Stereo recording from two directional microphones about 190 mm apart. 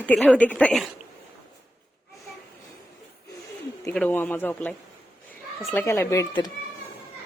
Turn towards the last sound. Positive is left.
turn(degrees=20)  # may be behind; listen again after turning